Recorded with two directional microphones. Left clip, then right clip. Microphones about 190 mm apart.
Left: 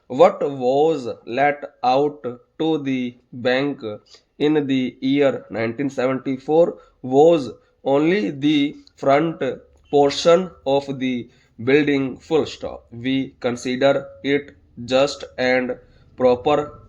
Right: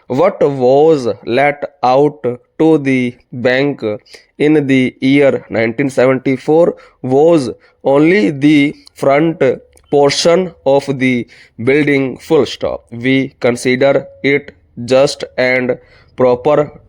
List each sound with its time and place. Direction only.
0.1 s speech: 45° right (ahead or behind)